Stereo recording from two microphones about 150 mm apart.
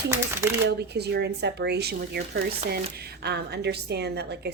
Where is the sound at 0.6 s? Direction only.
90° right.